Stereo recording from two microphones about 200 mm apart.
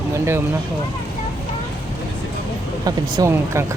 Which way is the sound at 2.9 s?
15° right (ahead or behind).